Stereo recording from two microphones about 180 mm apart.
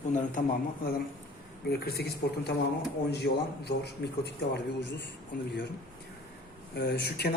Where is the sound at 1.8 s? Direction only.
60° left (ahead or behind).